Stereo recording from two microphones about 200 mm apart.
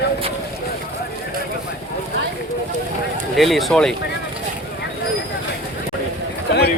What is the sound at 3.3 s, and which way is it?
Speech, centre (ahead or behind).